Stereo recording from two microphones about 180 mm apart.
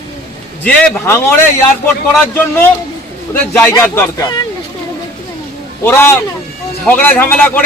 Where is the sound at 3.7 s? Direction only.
10° left (ahead or behind).